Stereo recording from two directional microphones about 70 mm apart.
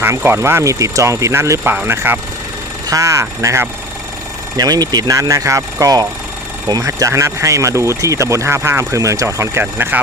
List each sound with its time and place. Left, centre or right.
0.2 s speech: right
1.6 s speech: right
1.9 s speech: right
2.8 s speech: right
4.5 s speech: right
9.7 s speech: right